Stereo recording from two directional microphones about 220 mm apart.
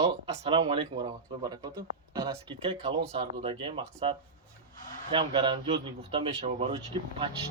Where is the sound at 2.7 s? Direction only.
25° right (ahead or behind).